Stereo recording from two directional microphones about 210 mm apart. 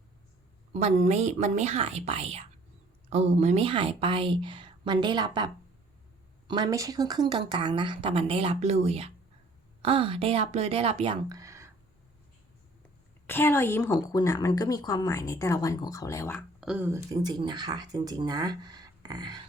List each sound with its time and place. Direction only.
0.7 s a woman's voice: 30° right (ahead or behind)
6.5 s speech: 15° right (ahead or behind)
13.2 s a woman's voice: 10° left (ahead or behind)
16.6 s speech: 5° right (ahead or behind)